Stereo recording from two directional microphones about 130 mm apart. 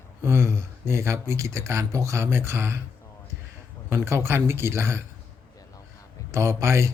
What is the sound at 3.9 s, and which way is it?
A man's voice, 20° right (ahead or behind).